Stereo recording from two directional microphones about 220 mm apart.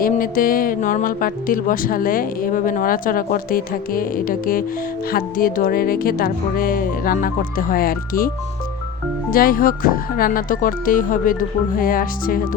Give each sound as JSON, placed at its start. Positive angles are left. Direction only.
{"t": 0.0, "sound": "speech", "side_deg": 40}
{"t": 9.3, "sound": "speech", "side_deg": 40}